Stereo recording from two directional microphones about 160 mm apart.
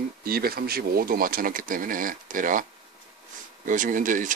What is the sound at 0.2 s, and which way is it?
Speech, 70° right (ahead or behind).